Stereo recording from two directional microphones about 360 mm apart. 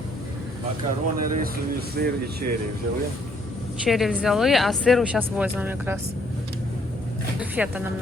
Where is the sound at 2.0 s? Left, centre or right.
Right.